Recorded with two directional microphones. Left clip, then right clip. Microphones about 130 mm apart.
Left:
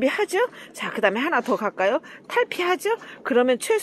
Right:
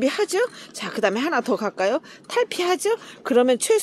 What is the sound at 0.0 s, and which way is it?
Speech, 20° right (ahead or behind).